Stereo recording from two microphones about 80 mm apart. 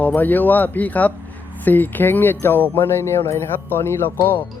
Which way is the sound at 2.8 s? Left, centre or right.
Left.